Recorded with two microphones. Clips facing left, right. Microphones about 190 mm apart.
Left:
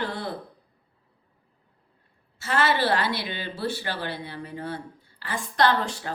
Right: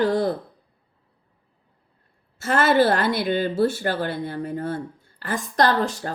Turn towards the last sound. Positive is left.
turn(degrees=-40)  # may be behind; listen again after turning